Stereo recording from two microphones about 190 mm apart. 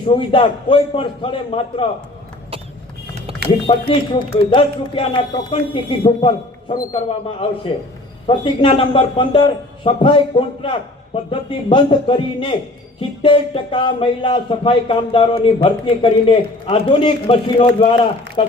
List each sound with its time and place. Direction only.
0.0 s speech: 30° left (ahead or behind)
3.7 s speech: 30° left (ahead or behind)